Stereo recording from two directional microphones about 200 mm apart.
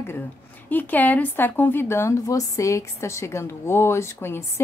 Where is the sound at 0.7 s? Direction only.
10° left (ahead or behind).